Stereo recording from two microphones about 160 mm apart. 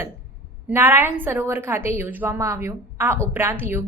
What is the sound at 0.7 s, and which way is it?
A woman's voice, 15° right (ahead or behind).